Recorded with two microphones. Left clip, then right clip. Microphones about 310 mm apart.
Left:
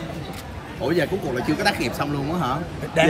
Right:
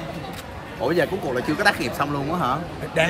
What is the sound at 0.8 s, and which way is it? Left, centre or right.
Speech, centre.